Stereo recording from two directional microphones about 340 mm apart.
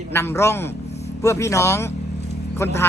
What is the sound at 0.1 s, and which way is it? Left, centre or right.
A man's voice, centre.